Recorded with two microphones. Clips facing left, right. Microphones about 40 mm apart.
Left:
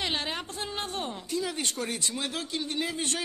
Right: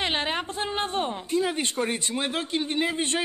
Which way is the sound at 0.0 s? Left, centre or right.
Right.